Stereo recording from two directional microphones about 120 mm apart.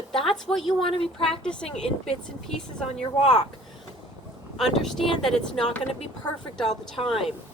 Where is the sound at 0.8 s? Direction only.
50° left (ahead or behind).